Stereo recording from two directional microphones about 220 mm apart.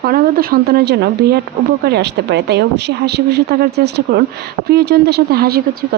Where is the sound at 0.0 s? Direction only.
40° right (ahead or behind).